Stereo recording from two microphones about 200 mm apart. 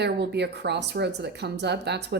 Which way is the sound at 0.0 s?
55° right (ahead or behind).